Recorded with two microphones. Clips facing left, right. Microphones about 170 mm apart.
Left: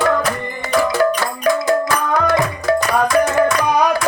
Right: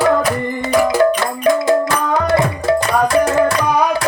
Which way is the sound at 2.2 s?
25° right (ahead or behind).